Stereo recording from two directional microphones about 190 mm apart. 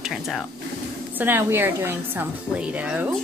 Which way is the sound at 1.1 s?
10° right (ahead or behind).